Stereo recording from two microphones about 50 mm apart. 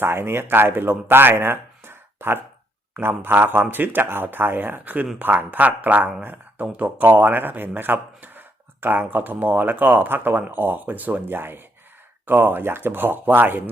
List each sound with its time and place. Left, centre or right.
0.0 s speech: right